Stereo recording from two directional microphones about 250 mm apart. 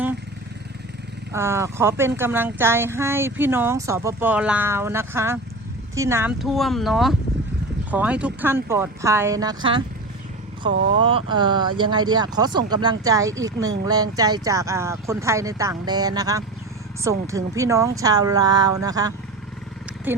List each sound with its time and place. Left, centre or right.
1.3 s speech: centre